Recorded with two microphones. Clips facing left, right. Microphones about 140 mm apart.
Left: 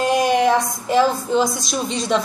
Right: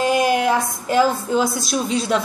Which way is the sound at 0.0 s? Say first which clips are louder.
Left 1 dB; 5° right (ahead or behind).